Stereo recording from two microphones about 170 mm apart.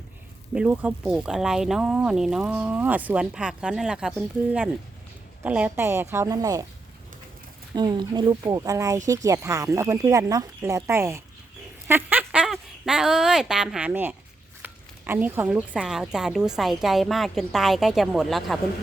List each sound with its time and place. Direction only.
0.5 s speech: 10° right (ahead or behind)
5.4 s a woman's voice: 10° right (ahead or behind)
7.8 s speech: 25° right (ahead or behind); by 18.6 s centre (ahead or behind)